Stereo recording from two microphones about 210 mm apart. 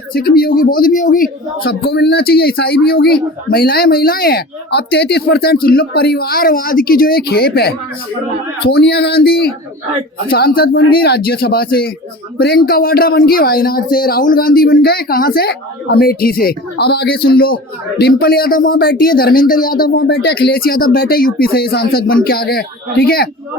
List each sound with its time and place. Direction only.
0.1 s speech: 45° left (ahead or behind)